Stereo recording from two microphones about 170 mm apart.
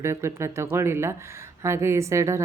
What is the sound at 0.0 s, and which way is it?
Speech, 15° right (ahead or behind).